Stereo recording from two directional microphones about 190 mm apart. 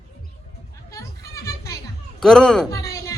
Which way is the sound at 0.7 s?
15° left (ahead or behind).